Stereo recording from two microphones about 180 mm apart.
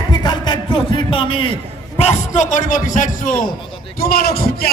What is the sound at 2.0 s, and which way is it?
Speech, 40° left (ahead or behind).